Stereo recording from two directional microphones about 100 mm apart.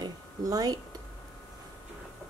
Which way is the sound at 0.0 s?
40° right (ahead or behind).